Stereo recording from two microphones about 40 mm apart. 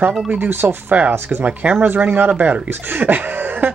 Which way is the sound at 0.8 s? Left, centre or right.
Right.